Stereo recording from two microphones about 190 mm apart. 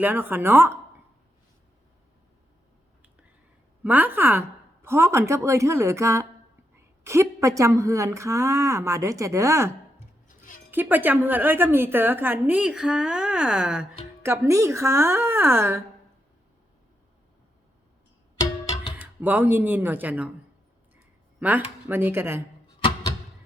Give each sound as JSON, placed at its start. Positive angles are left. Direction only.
{"t": 0.0, "sound": "a woman's voice", "side_deg": -10}
{"t": 3.8, "sound": "a woman's voice", "side_deg": -10}
{"t": 18.9, "sound": "a woman's voice", "side_deg": -10}
{"t": 21.4, "sound": "a woman's voice", "side_deg": -10}